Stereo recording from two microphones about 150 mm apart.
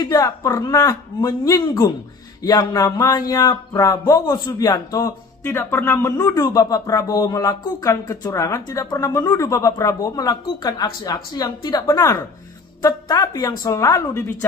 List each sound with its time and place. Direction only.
0.0 s speech: 20° left (ahead or behind)